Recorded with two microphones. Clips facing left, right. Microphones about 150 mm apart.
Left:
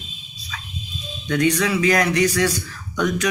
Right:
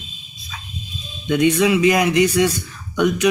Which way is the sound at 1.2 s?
15° right (ahead or behind).